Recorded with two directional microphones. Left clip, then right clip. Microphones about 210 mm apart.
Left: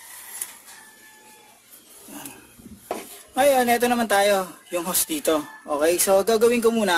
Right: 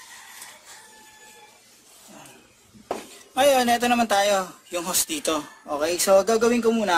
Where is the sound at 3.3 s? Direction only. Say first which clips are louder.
Even; 25° left (ahead or behind).